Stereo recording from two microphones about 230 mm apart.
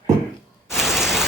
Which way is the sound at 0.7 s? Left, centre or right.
Centre.